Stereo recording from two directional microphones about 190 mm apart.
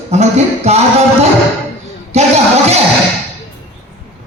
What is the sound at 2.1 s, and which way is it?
Speech, 35° right (ahead or behind).